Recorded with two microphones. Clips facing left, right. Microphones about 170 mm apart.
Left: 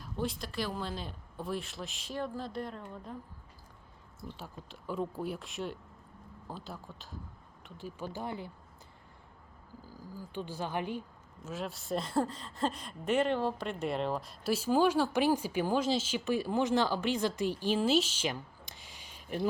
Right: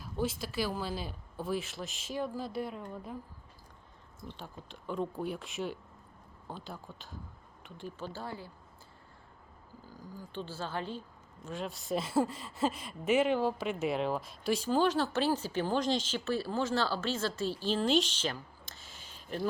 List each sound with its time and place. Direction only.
0.0 s speech: 5° right (ahead or behind)
4.3 s speech: 5° left (ahead or behind); by 8.5 s 20° left (ahead or behind)
9.9 s speech: 10° left (ahead or behind)
11.4 s speech: centre (ahead or behind)